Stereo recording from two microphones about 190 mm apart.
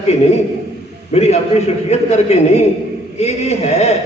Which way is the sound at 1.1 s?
35° left (ahead or behind).